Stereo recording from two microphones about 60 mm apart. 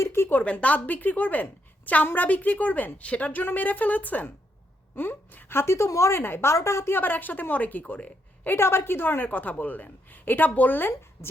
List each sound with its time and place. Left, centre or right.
0.0 s a sound: left
0.4 s a woman's voice: left
6.9 s a woman's voice: left
8.5 s a woman's voice: left